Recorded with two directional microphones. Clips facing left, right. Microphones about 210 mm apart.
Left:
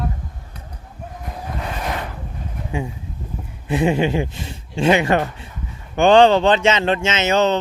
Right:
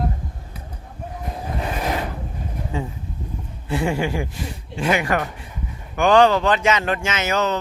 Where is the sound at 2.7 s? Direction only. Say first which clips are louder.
Left 3 dB; 15° left (ahead or behind).